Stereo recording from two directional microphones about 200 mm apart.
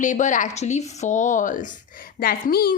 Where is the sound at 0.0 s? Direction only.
40° left (ahead or behind).